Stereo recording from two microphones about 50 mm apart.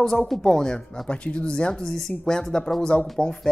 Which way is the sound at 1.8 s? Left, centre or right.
Centre.